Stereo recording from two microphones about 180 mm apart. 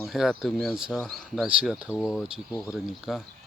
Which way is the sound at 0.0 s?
Centre (ahead or behind).